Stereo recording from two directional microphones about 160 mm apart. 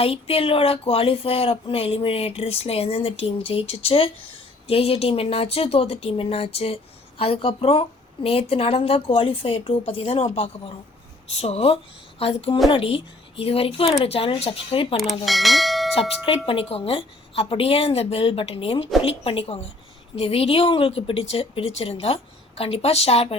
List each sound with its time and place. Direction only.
0.0 s speech: 35° left (ahead or behind)
15.2 s speech: centre (ahead or behind)
16.0 s speech: 35° left (ahead or behind)